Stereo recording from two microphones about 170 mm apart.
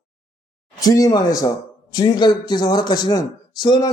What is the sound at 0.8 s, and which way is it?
Speech, 20° left (ahead or behind).